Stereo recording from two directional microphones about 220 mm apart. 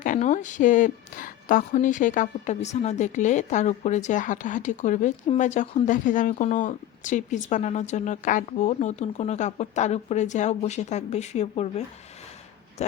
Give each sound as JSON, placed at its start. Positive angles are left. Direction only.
{"t": 0.0, "sound": "a woman's voice", "side_deg": 35}